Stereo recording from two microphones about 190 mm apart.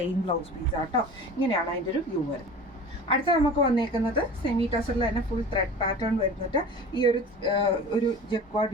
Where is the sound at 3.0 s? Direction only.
25° left (ahead or behind).